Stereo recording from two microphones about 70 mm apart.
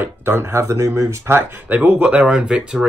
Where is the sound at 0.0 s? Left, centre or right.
Right.